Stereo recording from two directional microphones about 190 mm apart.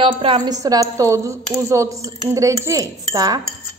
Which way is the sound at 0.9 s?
15° right (ahead or behind).